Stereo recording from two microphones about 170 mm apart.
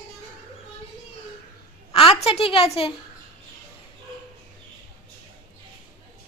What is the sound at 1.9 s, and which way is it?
A woman's voice, 35° left (ahead or behind).